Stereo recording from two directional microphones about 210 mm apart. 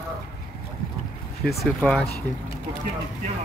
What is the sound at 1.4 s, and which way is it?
Speech, centre (ahead or behind).